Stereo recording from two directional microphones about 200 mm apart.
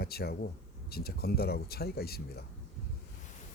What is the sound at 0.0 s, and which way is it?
Speech, 50° left (ahead or behind).